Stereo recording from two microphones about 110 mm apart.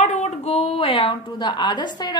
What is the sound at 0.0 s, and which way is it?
A woman's voice, 90° left.